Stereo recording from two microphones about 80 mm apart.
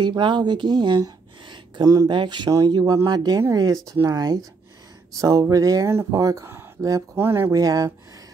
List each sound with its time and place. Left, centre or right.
0.0 s speech: right
2.5 s speech: right
5.2 s speech: right
7.5 s speech: right